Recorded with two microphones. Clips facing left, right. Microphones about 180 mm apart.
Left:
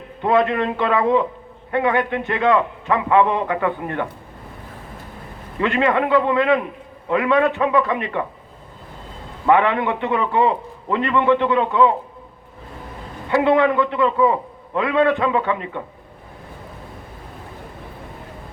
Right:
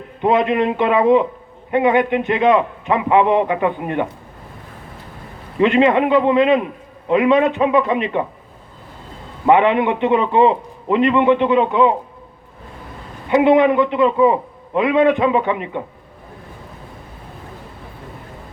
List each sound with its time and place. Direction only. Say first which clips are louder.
0.2 s a man's voice: right 2 dB; 20° right (ahead or behind)
5.5 s a man's voice: right 5 dB; 20° right (ahead or behind)
9.5 s a man's voice: right 3 dB; 20° right (ahead or behind)
13.2 s a man's voice: right 4 dB; 20° right (ahead or behind)